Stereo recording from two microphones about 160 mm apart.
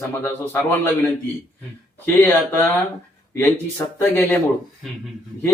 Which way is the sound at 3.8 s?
15° left (ahead or behind).